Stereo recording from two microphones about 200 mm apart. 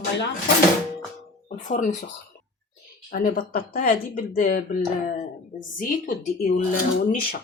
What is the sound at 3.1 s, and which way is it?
Speech, 45° left (ahead or behind).